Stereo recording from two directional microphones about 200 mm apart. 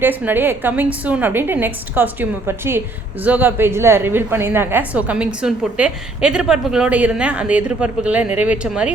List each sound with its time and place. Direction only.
0.0 s a woman's voice: 10° right (ahead or behind)